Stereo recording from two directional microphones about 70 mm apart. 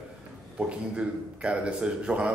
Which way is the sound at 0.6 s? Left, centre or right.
Centre.